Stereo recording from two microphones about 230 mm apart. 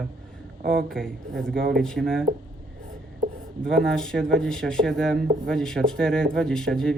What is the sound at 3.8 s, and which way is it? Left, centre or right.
Speech, centre.